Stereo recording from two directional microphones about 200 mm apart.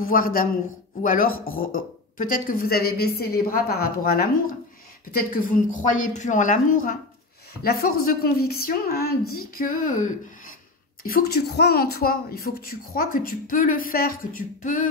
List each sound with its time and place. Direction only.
0.0 s a woman's voice: 45° left (ahead or behind)